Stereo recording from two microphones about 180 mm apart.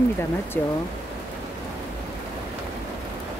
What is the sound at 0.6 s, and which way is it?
Speech, 10° left (ahead or behind).